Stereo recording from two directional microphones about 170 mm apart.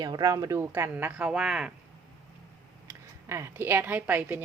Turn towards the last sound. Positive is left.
turn(degrees=-10)  # may be behind; listen again after turning